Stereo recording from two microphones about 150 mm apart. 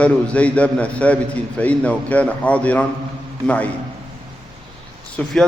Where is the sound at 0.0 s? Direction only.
10° left (ahead or behind).